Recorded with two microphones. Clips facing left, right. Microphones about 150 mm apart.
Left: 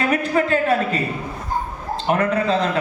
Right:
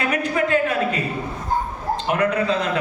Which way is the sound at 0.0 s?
40° left (ahead or behind).